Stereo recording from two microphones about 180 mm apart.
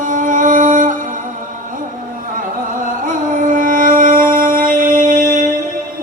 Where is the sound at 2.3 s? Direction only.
50° right (ahead or behind).